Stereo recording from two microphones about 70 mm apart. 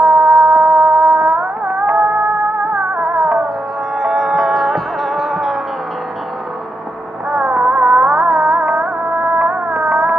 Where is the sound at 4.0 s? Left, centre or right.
Centre.